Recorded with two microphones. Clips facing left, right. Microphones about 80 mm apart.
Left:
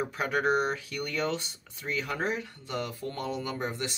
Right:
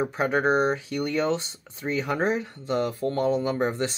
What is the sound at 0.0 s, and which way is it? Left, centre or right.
Speech, right.